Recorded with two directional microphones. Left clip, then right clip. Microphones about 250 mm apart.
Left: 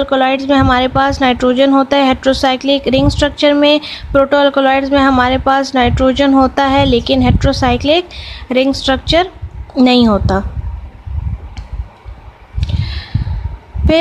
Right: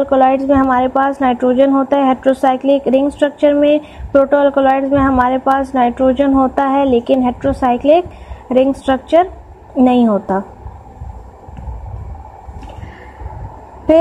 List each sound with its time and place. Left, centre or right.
0.0 s a woman's voice: left